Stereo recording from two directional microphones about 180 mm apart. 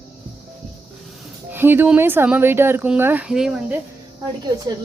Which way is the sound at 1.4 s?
10° right (ahead or behind).